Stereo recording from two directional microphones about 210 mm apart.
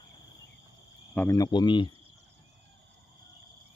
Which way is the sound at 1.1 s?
10° left (ahead or behind).